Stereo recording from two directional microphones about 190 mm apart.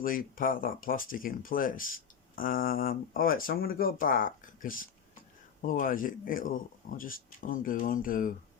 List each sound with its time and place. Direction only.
0.0 s speech: 45° left (ahead or behind)